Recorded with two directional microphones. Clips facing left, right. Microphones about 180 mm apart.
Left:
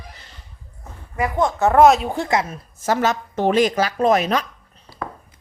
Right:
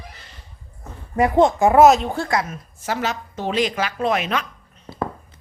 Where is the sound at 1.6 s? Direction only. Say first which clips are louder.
Left 2 dB; 10° right (ahead or behind).